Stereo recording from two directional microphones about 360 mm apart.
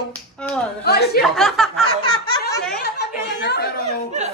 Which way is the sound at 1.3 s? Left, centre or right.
Centre.